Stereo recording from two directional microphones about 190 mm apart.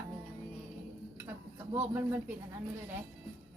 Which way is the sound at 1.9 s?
10° right (ahead or behind).